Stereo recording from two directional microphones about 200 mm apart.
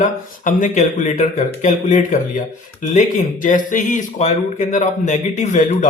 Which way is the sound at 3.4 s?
40° left (ahead or behind).